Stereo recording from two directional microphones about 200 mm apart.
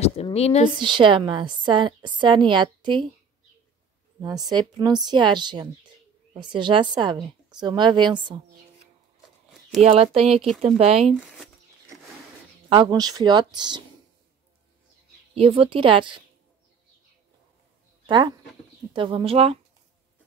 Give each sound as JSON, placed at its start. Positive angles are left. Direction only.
{"t": 0.0, "sound": "speech", "side_deg": 30}
{"t": 0.7, "sound": "a woman's voice", "side_deg": -25}
{"t": 4.2, "sound": "a woman's voice", "side_deg": -20}
{"t": 9.8, "sound": "speech", "side_deg": -30}
{"t": 11.2, "sound": "a sound", "side_deg": 0}
{"t": 12.6, "sound": "a woman's voice", "side_deg": -25}
{"t": 15.3, "sound": "a woman's voice", "side_deg": -30}
{"t": 18.0, "sound": "a woman's voice", "side_deg": -25}